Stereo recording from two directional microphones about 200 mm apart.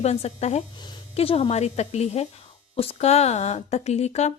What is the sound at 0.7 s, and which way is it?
A woman's voice, 20° left (ahead or behind).